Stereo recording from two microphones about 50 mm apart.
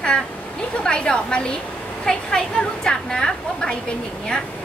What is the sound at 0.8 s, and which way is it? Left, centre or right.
A woman's voice, centre.